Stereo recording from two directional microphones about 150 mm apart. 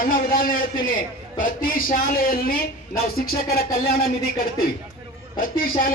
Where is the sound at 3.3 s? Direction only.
90° left.